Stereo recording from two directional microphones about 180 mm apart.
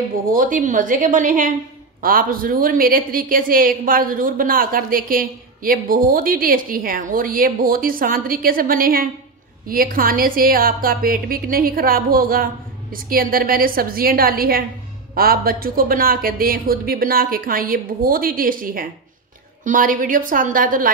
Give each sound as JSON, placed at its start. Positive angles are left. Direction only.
{"t": 0.3, "sound": "a woman's voice", "side_deg": -50}